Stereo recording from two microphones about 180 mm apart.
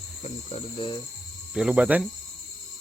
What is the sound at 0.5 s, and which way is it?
Speech, 25° left (ahead or behind).